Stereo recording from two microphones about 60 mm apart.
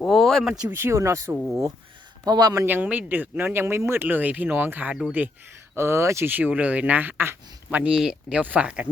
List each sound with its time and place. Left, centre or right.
0.0 s a sound: centre
0.4 s speech: centre
0.7 s speech: right
2.2 s speech: right
2.6 s speech: right
5.7 s speech: right
6.2 s speech: right
7.7 s speech: right
7.9 s speech: centre
8.4 s speech: right